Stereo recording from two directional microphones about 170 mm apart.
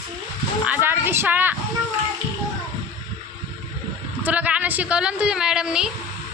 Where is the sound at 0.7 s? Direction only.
10° right (ahead or behind).